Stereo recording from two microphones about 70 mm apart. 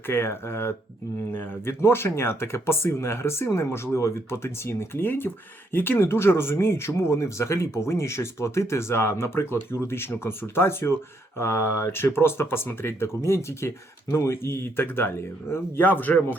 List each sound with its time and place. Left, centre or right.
0.1 s speech: left